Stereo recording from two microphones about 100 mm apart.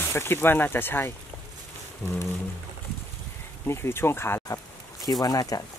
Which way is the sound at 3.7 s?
25° left (ahead or behind).